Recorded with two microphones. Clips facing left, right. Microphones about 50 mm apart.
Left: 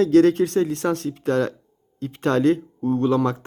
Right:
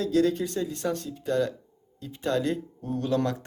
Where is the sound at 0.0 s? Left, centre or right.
Left.